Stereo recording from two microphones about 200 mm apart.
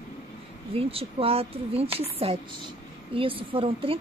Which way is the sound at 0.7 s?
30° right (ahead or behind).